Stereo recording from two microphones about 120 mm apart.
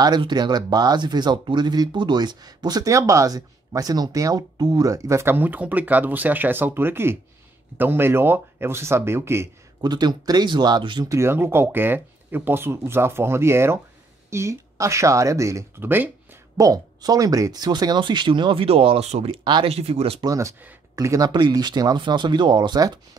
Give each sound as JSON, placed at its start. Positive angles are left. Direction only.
{"t": 0.0, "sound": "speech", "side_deg": -35}
{"t": 9.8, "sound": "speech", "side_deg": -35}
{"t": 11.1, "sound": "speech", "side_deg": -20}
{"t": 16.5, "sound": "speech", "side_deg": -30}
{"t": 19.4, "sound": "speech", "side_deg": -40}
{"t": 19.7, "sound": "speech", "side_deg": -60}
{"t": 20.2, "sound": "speech", "side_deg": -30}